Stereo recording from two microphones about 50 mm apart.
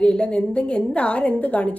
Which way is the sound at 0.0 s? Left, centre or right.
Centre.